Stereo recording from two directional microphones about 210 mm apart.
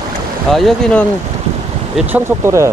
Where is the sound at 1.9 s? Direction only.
10° right (ahead or behind).